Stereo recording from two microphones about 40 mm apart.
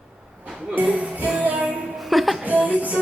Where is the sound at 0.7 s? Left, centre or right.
Right.